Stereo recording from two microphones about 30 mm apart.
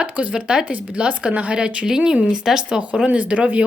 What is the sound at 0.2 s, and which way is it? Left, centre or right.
A woman's voice, right.